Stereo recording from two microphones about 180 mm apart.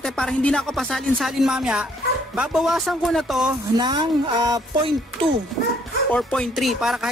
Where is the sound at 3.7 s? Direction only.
25° right (ahead or behind).